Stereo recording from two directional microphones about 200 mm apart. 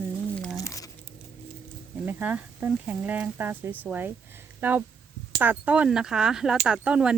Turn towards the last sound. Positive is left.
turn(degrees=-5)  # may be behind; listen again after turning